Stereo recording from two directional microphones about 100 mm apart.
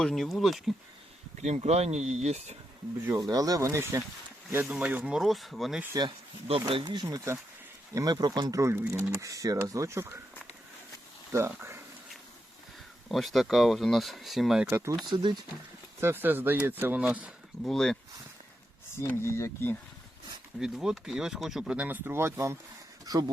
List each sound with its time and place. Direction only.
0.0 s speech: 5° left (ahead or behind)
1.5 s speech: 90° right
3.1 s speech: 35° right (ahead or behind)
4.6 s speech: 15° right (ahead or behind)
5.9 s speech: 45° right (ahead or behind); by 10.2 s 30° right (ahead or behind)
11.3 s speech: 25° right (ahead or behind)
13.1 s speech: centre (ahead or behind)
14.7 s speech: 20° right (ahead or behind)
15.1 s speech: 50° right (ahead or behind)
16.0 s speech: 25° right (ahead or behind)
17.7 s speech: 5° left (ahead or behind)
18.9 s speech: 25° left (ahead or behind)
20.6 s speech: 5° right (ahead or behind); by 22.5 s 25° right (ahead or behind)
23.0 s speech: 40° right (ahead or behind)